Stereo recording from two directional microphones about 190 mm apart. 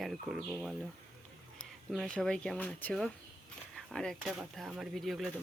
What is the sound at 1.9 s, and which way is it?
Speech, 5° left (ahead or behind).